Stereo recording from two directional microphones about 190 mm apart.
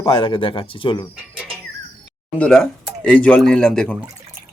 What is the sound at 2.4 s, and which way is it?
Speech, 5° left (ahead or behind).